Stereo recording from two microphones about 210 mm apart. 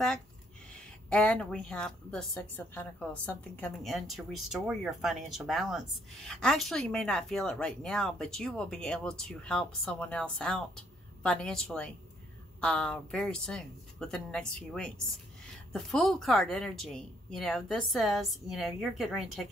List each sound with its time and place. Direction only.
0.7 s speech: 5° left (ahead or behind)